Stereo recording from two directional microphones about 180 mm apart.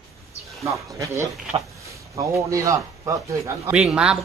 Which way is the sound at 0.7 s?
15° right (ahead or behind).